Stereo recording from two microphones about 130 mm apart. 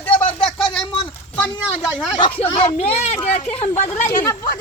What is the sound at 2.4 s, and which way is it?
A child's voice, 50° left (ahead or behind).